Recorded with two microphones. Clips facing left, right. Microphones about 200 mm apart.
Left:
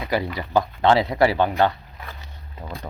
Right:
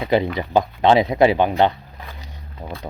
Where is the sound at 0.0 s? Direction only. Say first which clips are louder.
Right 6 dB; 25° right (ahead or behind).